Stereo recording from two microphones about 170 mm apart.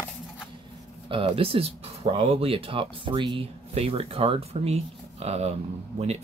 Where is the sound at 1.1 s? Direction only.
30° right (ahead or behind).